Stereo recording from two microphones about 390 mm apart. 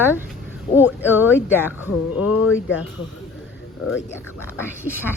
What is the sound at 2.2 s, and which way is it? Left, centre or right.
Speech, left.